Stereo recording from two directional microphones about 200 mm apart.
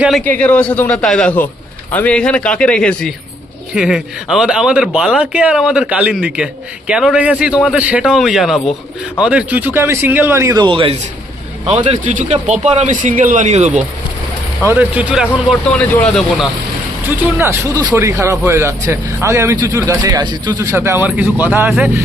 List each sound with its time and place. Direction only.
0.3 s speech: 5° left (ahead or behind); by 13.8 s 35° right (ahead or behind)
14.7 s speech: 10° right (ahead or behind)
17.1 s speech: 10° right (ahead or behind)